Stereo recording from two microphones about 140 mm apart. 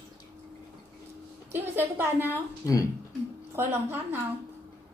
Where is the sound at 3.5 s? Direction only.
15° right (ahead or behind).